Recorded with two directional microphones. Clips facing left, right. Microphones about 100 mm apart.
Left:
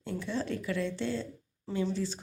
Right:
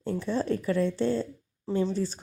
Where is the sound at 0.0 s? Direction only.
40° right (ahead or behind).